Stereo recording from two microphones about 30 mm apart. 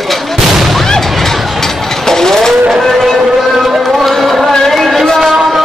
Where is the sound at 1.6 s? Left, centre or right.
Centre.